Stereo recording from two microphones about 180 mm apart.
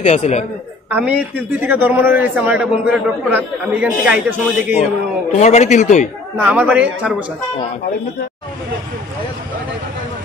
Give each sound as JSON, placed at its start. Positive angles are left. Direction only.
{"t": 0.0, "sound": "a man's voice", "side_deg": 40}
{"t": 0.8, "sound": "a man's voice", "side_deg": -10}
{"t": 5.4, "sound": "a man's voice", "side_deg": 40}
{"t": 6.3, "sound": "a man's voice", "side_deg": -10}